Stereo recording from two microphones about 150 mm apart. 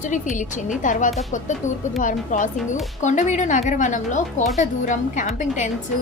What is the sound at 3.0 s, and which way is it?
A woman's voice, 55° left (ahead or behind).